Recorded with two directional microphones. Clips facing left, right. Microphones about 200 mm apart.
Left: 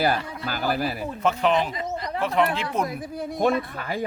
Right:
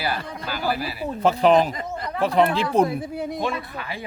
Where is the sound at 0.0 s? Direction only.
45° left (ahead or behind).